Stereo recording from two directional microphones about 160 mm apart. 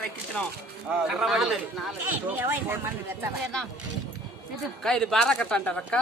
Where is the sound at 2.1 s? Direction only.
10° right (ahead or behind).